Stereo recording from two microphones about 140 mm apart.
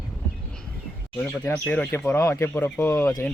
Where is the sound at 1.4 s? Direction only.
10° left (ahead or behind).